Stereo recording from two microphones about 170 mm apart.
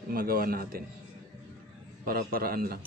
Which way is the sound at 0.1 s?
60° right (ahead or behind).